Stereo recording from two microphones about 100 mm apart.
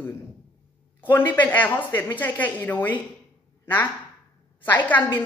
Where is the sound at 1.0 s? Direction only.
20° left (ahead or behind).